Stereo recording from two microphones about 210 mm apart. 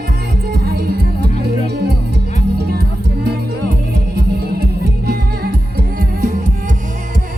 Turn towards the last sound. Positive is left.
turn(degrees=-40)  # may be behind; listen again after turning